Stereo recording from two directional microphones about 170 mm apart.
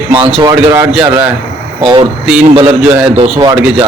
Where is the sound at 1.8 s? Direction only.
30° right (ahead or behind).